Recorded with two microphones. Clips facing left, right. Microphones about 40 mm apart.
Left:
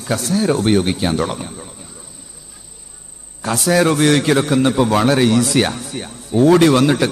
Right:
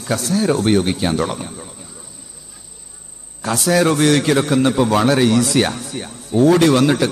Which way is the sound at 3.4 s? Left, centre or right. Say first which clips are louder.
Left 1 dB; centre.